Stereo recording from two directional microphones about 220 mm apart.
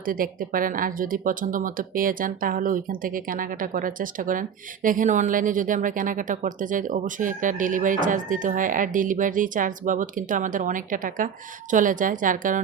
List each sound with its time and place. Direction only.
0.0 s speech: 40° right (ahead or behind)